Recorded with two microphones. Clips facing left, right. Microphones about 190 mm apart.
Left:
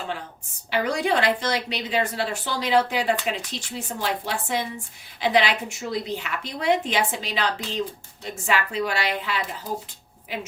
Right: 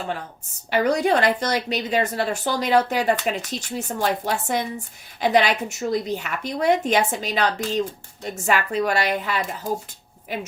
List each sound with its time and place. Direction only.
0.7 s a woman's voice: 40° right (ahead or behind)